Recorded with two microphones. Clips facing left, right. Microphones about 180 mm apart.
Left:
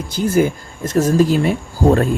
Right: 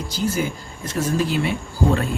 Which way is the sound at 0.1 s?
55° left (ahead or behind).